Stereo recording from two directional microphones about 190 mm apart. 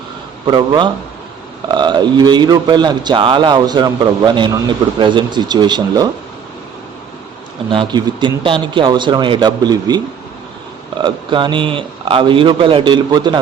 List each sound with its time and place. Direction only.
0.4 s speech: 25° right (ahead or behind)
7.7 s speech: 25° right (ahead or behind)
11.0 s speech: 25° right (ahead or behind)